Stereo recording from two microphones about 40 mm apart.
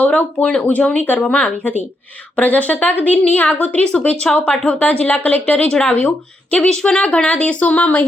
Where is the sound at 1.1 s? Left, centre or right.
Left.